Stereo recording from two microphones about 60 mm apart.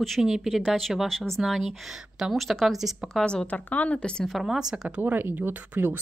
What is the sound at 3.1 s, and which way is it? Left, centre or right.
Speech, centre.